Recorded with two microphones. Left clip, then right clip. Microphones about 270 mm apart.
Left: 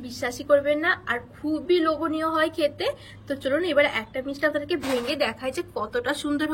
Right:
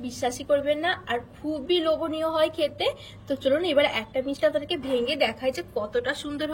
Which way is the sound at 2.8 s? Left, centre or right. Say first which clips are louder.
Right 1 dB; left.